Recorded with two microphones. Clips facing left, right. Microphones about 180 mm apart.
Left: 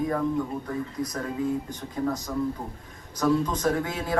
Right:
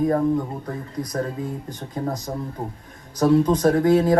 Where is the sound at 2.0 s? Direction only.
35° right (ahead or behind).